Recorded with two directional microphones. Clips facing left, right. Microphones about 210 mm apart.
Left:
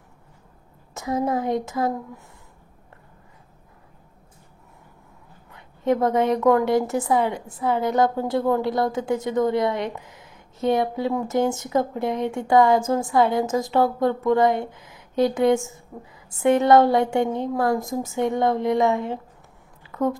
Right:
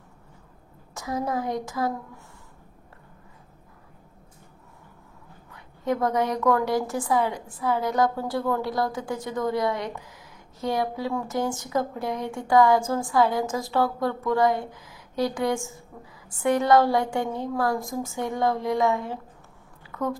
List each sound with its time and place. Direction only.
0.9 s a woman's voice: 25° left (ahead or behind)
5.5 s a woman's voice: 25° left (ahead or behind)
19.9 s a sound: 25° left (ahead or behind)